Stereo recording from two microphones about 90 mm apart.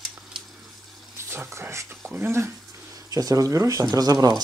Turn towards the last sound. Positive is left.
turn(degrees=-45)  # may be behind; listen again after turning